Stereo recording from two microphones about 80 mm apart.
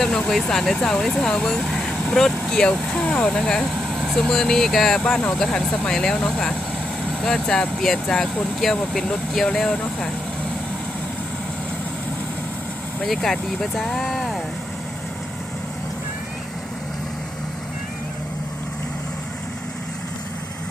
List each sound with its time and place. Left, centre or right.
0.0 s speech: centre
3.8 s vehicle: centre
4.2 s speech: centre
13.1 s speech: centre